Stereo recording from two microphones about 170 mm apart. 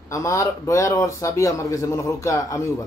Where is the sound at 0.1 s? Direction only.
20° left (ahead or behind).